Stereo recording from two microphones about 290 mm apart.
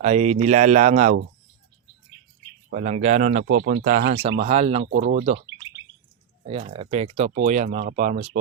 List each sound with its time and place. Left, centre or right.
0.0 s speech: right
2.6 s speech: right
4.4 s speech: right
6.4 s speech: centre